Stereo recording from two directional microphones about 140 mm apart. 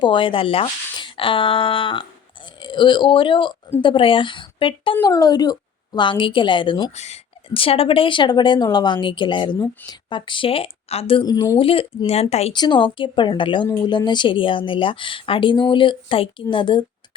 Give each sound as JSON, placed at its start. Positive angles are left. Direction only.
{"t": 0.0, "sound": "a woman's voice", "side_deg": 35}
{"t": 4.9, "sound": "a woman's voice", "side_deg": 25}
{"t": 6.9, "sound": "a woman's voice", "side_deg": 50}
{"t": 11.3, "sound": "speech", "side_deg": 30}
{"t": 12.5, "sound": "a woman's voice", "side_deg": 30}